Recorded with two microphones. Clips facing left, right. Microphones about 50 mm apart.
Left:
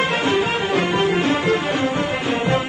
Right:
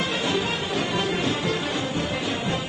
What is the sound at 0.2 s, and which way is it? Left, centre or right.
Music, left.